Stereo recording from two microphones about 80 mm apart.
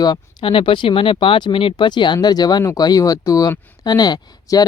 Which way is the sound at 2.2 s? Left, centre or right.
Left.